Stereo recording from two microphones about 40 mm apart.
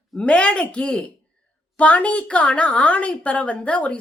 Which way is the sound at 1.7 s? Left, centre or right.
Left.